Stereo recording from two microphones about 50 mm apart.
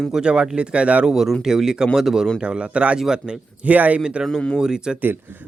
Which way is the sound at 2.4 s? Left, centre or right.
Right.